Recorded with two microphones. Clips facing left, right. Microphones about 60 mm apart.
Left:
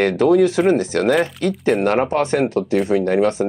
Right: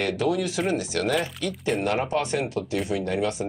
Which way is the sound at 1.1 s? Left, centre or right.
Left.